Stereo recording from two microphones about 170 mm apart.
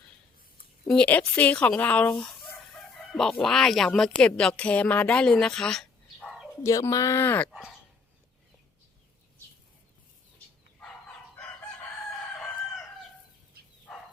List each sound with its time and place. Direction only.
0.9 s a woman's voice: 5° left (ahead or behind)
6.6 s speech: 20° left (ahead or behind)